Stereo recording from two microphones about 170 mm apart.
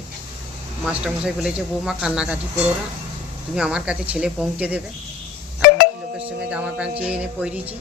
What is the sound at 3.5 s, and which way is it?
A man's voice, 5° right (ahead or behind).